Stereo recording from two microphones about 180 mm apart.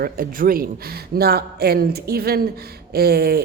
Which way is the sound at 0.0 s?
50° right (ahead or behind).